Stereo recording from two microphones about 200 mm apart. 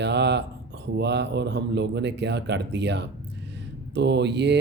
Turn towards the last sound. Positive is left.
turn(degrees=-60)  # may be behind; listen again after turning